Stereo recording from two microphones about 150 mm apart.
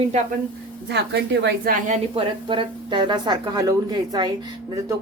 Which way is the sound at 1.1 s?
85° right.